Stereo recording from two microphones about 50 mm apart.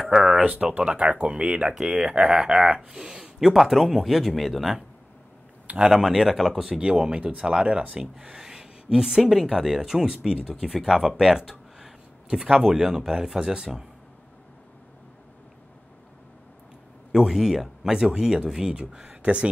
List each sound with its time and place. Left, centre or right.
0.0 s speech: centre
2.9 s speech: centre
5.8 s speech: centre
6.8 s speech: centre
17.1 s speech: centre; by 19.5 s right